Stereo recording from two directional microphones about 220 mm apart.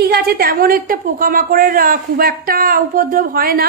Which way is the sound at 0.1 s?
45° right (ahead or behind).